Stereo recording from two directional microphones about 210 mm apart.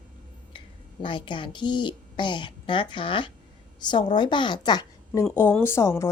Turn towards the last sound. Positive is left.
turn(degrees=15)  # may be behind; listen again after turning